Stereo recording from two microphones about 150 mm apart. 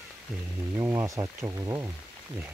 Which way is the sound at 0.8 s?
20° right (ahead or behind).